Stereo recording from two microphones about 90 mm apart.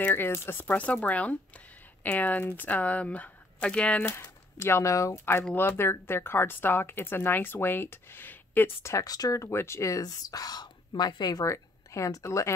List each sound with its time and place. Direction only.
0.0 s speech: 25° left (ahead or behind)
4.0 s speech: 30° left (ahead or behind); by 11.4 s 50° left (ahead or behind)
11.4 s speech: 35° left (ahead or behind)